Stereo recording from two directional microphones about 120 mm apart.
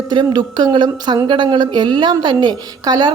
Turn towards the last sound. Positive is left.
turn(degrees=-35)  # may be behind; listen again after turning